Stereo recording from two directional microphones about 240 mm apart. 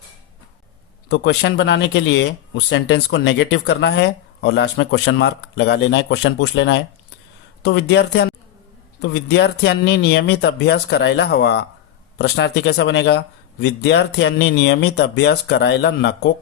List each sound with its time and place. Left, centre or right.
1.0 s speech: left